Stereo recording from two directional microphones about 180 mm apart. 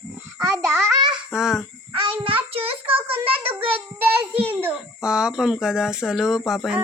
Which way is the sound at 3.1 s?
30° right (ahead or behind).